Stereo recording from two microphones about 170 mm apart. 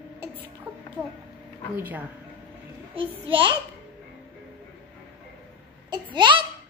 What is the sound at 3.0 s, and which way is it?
Speech, 30° right (ahead or behind).